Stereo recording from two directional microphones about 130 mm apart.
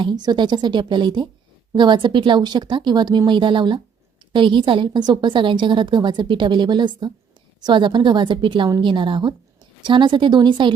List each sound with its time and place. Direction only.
0.0 s a woman's voice: 35° right (ahead or behind)